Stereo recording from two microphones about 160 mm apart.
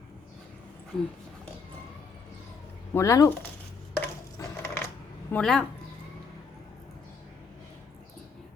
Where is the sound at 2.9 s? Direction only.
20° left (ahead or behind).